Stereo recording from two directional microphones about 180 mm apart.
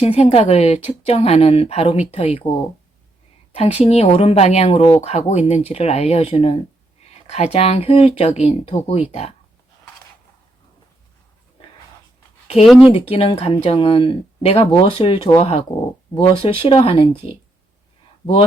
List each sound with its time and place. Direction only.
0.0 s speech: 35° left (ahead or behind)
3.5 s speech: 35° left (ahead or behind)
12.6 s speech: centre (ahead or behind)
13.1 s speech: 30° left (ahead or behind)